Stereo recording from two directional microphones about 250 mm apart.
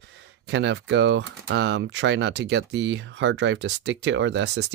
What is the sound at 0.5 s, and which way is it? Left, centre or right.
Speech, right.